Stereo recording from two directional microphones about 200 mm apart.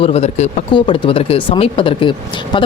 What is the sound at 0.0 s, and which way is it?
Speech, 30° left (ahead or behind).